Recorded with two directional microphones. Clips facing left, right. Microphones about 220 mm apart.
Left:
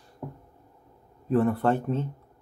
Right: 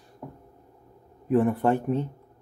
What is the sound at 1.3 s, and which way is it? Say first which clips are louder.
Speech: right 1 dB; 15° right (ahead or behind).